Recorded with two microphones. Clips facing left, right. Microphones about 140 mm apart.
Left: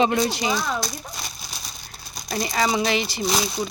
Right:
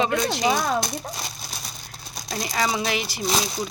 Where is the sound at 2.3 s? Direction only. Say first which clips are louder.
Left 3 dB; centre (ahead or behind).